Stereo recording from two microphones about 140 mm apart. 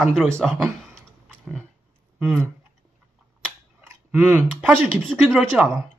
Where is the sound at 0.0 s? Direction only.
Centre (ahead or behind).